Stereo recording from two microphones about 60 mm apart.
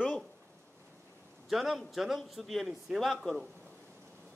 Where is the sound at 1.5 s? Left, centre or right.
Centre.